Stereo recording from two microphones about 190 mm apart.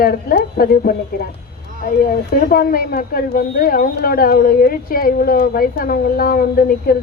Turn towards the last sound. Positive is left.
turn(degrees=50)  # may be behind; listen again after turning